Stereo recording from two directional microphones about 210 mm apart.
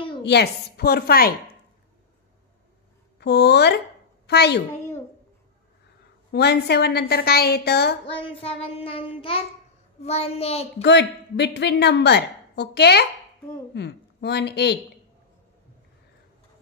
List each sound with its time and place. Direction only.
0.2 s a woman's voice: 50° left (ahead or behind)
3.2 s a woman's voice: 50° left (ahead or behind)
6.3 s a woman's voice: 50° left (ahead or behind)
8.4 s child singing: 25° left (ahead or behind)
10.8 s a woman's voice: 55° left (ahead or behind)